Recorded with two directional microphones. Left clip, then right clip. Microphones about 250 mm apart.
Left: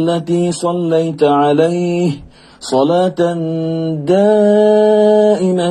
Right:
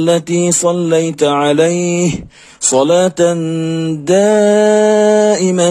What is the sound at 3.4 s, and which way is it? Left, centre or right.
Mantra, right.